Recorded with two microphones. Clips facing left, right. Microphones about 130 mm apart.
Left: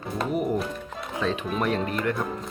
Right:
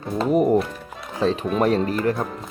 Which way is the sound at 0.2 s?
40° right (ahead or behind).